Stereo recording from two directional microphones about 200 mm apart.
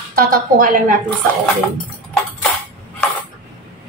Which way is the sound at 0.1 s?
45° right (ahead or behind).